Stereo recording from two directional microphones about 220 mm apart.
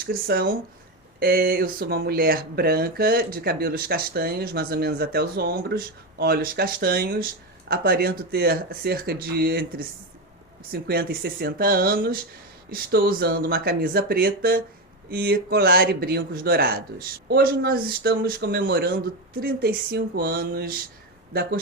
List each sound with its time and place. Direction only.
0.0 s speech: 45° right (ahead or behind)